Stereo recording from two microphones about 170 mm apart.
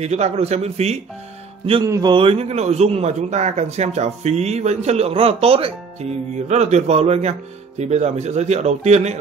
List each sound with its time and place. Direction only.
0.0 s a man's voice: 40° right (ahead or behind)
1.9 s a man's voice: 25° right (ahead or behind); by 9.2 s 40° right (ahead or behind)